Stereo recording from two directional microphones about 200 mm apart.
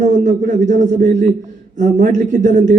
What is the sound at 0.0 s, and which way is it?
Speech, 40° right (ahead or behind).